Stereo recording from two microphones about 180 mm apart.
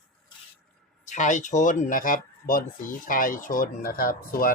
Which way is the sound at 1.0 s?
45° left (ahead or behind).